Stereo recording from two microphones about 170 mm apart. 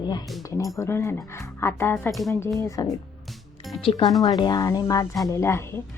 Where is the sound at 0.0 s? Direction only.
25° left (ahead or behind).